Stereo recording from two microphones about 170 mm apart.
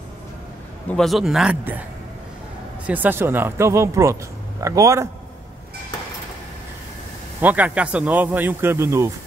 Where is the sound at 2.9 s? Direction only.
10° right (ahead or behind).